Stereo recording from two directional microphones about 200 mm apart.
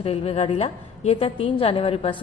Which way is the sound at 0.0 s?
30° left (ahead or behind).